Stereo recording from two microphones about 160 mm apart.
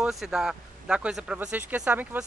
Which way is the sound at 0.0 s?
5° right (ahead or behind).